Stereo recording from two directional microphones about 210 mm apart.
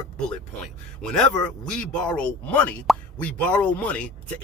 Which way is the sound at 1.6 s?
5° left (ahead or behind).